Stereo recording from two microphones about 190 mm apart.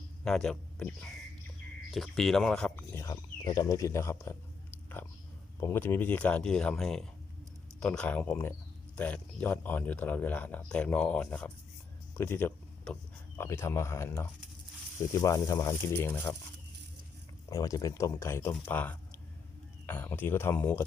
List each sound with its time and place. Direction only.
0.3 s speech: 5° left (ahead or behind)
5.5 s speech: 10° left (ahead or behind)
17.5 s speech: 15° left (ahead or behind)